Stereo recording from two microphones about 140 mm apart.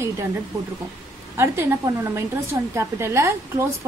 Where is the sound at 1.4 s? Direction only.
20° right (ahead or behind).